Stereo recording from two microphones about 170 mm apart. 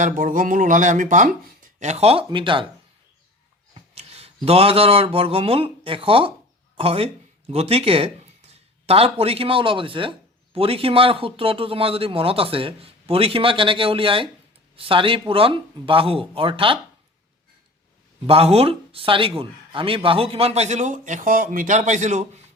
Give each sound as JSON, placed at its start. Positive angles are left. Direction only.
{"t": 0.0, "sound": "speech", "side_deg": -50}
{"t": 3.8, "sound": "a sound", "side_deg": -35}
{"t": 4.4, "sound": "speech", "side_deg": -35}
{"t": 18.3, "sound": "speech", "side_deg": -35}